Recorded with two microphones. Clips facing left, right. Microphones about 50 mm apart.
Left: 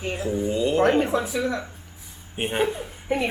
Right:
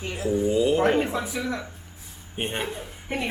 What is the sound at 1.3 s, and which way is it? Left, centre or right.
Speech, centre.